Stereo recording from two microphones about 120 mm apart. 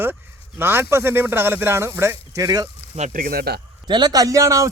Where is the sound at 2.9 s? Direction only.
70° right (ahead or behind).